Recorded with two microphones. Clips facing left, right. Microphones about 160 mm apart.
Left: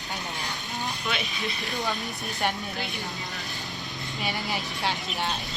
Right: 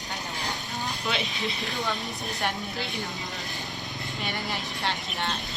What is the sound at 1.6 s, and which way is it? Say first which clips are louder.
Speech: left 3 dB; centre (ahead or behind).